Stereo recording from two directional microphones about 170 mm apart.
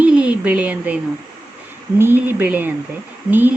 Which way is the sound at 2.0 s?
10° right (ahead or behind).